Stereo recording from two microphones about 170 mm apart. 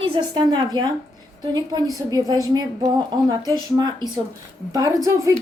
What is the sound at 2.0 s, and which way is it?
A woman's voice, 20° right (ahead or behind).